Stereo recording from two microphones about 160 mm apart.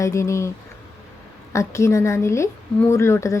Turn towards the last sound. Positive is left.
turn(degrees=15)  # may be behind; listen again after turning